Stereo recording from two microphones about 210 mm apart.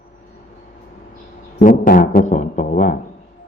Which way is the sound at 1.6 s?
40° left (ahead or behind).